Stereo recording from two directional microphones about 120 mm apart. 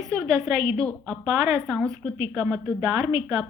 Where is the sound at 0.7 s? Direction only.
5° left (ahead or behind).